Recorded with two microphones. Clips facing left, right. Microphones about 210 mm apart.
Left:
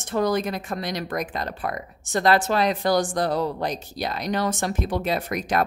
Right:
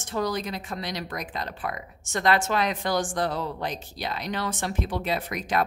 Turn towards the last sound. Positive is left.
turn(degrees=45)  # may be behind; listen again after turning